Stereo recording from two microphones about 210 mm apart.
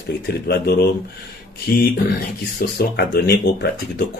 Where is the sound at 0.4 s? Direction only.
50° left (ahead or behind).